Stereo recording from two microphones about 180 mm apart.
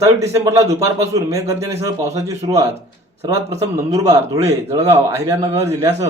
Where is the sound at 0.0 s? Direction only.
15° right (ahead or behind).